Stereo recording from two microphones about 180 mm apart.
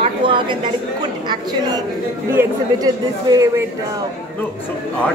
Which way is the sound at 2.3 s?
20° right (ahead or behind).